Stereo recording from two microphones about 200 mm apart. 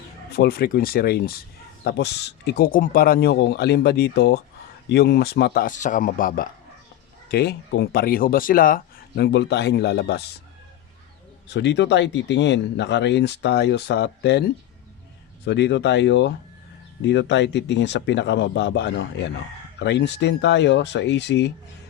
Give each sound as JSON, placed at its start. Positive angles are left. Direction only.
{"t": 0.3, "sound": "speech", "side_deg": 50}
{"t": 11.4, "sound": "speech", "side_deg": 60}